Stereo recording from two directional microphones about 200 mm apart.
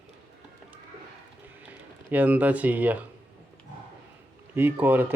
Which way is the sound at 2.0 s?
10° right (ahead or behind).